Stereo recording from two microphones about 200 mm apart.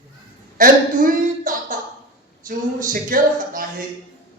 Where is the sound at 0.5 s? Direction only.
45° right (ahead or behind).